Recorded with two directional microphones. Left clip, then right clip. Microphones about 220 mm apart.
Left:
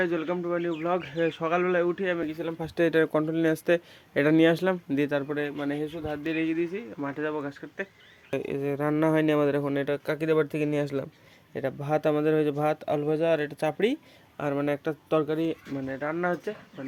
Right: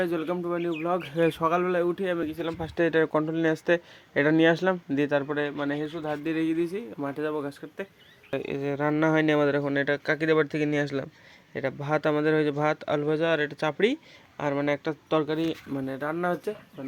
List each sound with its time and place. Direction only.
0.0 s speech: 10° right (ahead or behind)
1.1 s speech: 30° right (ahead or behind)
1.4 s speech: 10° right (ahead or behind)
8.3 s speech: 10° left (ahead or behind)
15.7 s speech: 15° right (ahead or behind)